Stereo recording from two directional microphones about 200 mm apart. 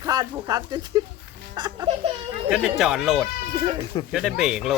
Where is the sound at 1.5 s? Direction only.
20° right (ahead or behind).